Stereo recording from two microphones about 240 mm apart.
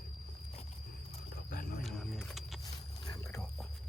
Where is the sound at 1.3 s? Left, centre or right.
Left.